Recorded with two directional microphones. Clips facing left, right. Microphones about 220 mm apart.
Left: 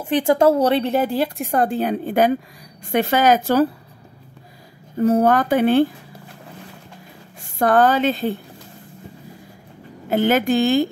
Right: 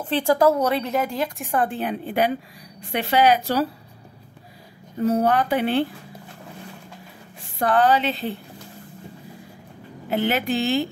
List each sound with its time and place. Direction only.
0.0 s a woman's voice: 20° left (ahead or behind); by 3.6 s 50° left (ahead or behind)
5.0 s a woman's voice: 50° left (ahead or behind)
7.5 s a woman's voice: 45° left (ahead or behind)
10.0 s a woman's voice: 45° left (ahead or behind)